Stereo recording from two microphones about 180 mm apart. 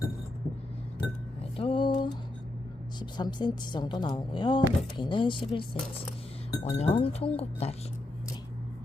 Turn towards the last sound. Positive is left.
turn(degrees=35)  # may be behind; listen again after turning